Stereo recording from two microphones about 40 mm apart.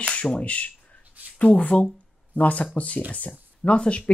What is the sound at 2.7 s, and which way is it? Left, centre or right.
Speech, left.